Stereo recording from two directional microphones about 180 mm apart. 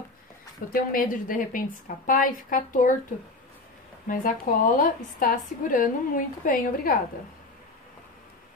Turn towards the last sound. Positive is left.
turn(degrees=50)  # may be behind; listen again after turning